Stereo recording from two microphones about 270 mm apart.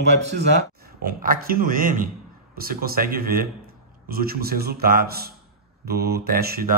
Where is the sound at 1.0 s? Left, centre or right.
Right.